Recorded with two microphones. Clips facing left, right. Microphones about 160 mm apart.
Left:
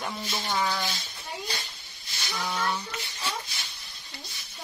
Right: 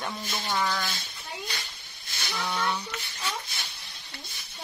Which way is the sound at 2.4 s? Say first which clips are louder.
Even; centre (ahead or behind).